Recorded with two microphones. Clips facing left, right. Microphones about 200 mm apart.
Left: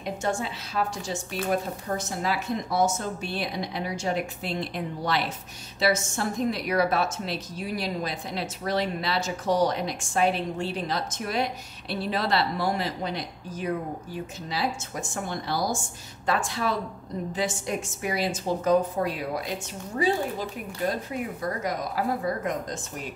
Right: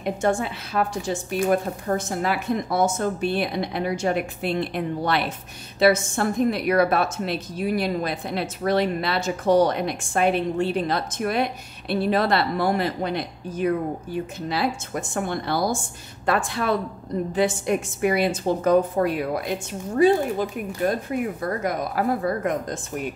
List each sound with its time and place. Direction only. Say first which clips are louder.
0.0 s a woman's voice: right 6 dB; 55° right (ahead or behind)